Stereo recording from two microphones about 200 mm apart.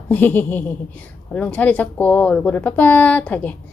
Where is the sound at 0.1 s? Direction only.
10° left (ahead or behind).